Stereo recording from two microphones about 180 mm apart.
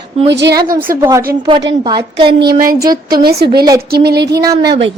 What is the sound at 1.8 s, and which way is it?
Speech, 25° right (ahead or behind).